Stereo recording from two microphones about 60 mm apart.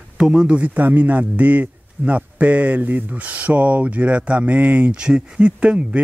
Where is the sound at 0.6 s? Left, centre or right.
Right.